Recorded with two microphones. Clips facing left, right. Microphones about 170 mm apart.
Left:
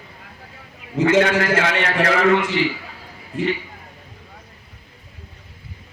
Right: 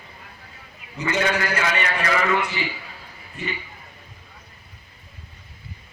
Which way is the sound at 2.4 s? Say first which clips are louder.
Left 8 dB; 90° left.